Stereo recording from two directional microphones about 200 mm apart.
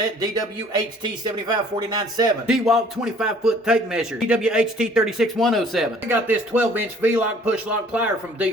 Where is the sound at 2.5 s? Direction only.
Centre (ahead or behind).